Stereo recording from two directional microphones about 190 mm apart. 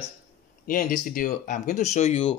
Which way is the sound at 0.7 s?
45° left (ahead or behind).